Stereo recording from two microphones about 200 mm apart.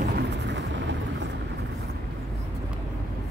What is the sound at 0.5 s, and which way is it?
Vehicle, 65° right (ahead or behind).